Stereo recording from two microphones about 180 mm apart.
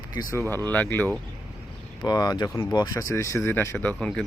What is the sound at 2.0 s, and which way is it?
Speech, 20° left (ahead or behind).